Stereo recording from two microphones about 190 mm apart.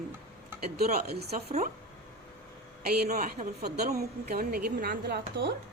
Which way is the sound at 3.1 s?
40° right (ahead or behind).